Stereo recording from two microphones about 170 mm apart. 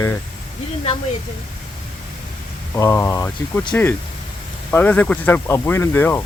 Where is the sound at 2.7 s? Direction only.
15° left (ahead or behind).